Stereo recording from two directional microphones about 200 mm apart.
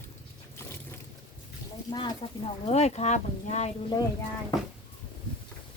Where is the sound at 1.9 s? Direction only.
20° left (ahead or behind).